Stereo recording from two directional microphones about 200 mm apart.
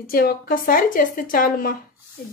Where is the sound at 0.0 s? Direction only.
45° left (ahead or behind).